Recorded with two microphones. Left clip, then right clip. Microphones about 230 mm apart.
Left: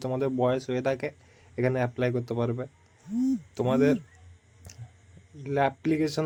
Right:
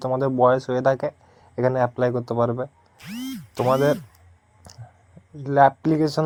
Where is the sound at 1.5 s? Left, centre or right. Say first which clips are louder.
Right 7 dB; centre.